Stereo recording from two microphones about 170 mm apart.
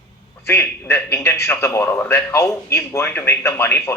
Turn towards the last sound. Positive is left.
turn(degrees=15)  # may be behind; listen again after turning